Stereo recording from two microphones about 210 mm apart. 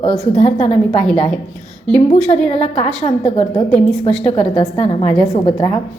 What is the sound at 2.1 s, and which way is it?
A woman's voice, 30° left (ahead or behind).